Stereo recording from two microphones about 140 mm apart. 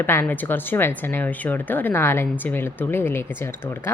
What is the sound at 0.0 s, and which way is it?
Speech, 15° left (ahead or behind).